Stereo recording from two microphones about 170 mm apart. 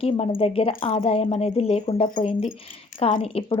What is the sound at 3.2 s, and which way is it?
Speech, 35° left (ahead or behind).